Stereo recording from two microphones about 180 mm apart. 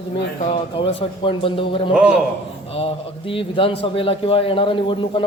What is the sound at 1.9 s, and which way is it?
Speech, 5° right (ahead or behind).